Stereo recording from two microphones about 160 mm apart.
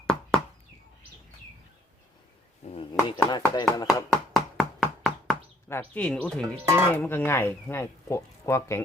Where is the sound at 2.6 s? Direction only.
35° left (ahead or behind).